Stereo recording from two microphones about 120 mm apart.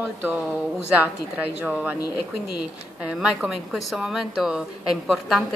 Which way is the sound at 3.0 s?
5° right (ahead or behind).